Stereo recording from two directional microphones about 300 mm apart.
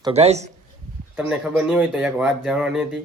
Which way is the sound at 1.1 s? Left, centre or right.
Centre.